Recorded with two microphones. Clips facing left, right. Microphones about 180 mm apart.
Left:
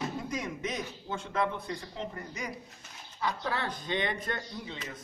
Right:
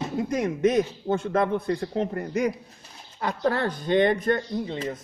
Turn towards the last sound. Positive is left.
turn(degrees=-40)  # may be behind; listen again after turning